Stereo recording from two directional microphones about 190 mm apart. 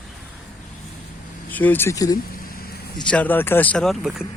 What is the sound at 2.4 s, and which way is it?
Vehicle, 50° left (ahead or behind).